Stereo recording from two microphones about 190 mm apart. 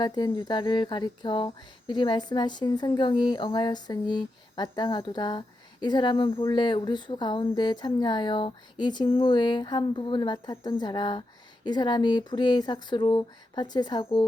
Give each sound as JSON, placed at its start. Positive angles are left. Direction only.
{"t": 0.0, "sound": "speech", "side_deg": 20}